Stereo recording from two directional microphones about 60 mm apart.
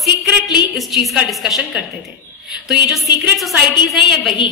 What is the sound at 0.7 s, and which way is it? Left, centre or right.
A woman's voice, centre.